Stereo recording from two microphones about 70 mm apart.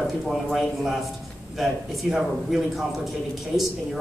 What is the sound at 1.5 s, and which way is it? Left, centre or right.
Speech, centre.